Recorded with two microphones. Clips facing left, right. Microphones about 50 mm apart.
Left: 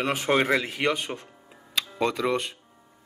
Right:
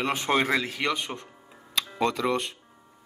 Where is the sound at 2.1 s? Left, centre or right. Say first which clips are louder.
Even; centre.